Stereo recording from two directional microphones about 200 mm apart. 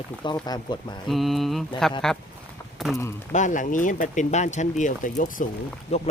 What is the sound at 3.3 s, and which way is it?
Speech, 40° left (ahead or behind).